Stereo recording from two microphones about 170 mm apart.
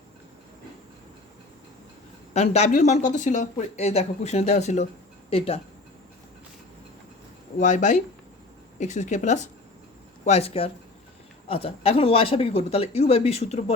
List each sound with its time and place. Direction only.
2.3 s speech: 40° left (ahead or behind)
7.6 s speech: 45° left (ahead or behind)